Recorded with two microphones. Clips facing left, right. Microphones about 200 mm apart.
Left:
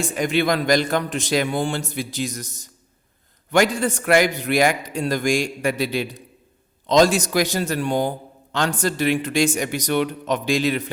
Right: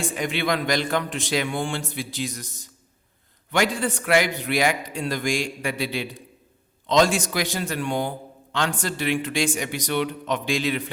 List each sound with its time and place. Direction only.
0.0 s a man's voice: 40° left (ahead or behind)